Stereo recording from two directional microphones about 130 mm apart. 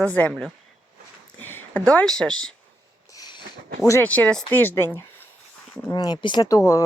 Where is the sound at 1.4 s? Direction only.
15° left (ahead or behind).